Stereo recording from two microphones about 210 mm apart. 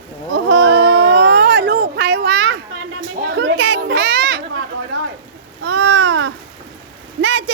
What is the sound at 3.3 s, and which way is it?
Children playing, 50° right (ahead or behind).